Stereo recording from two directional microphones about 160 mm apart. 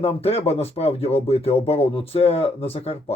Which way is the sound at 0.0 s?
35° left (ahead or behind).